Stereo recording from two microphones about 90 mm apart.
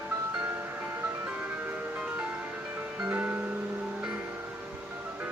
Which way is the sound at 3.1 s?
20° right (ahead or behind).